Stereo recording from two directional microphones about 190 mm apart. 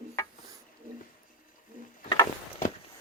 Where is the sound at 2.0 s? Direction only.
20° left (ahead or behind).